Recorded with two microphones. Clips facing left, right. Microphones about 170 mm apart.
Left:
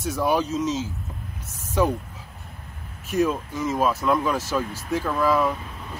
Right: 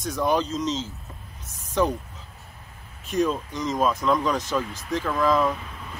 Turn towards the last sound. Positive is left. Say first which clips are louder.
# even
turn(degrees=10)  # may be behind; listen again after turning